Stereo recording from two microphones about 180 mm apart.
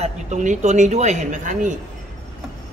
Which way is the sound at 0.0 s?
40° right (ahead or behind).